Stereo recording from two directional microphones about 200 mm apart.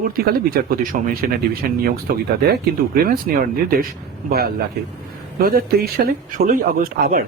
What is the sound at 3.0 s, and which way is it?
Speech, 45° right (ahead or behind).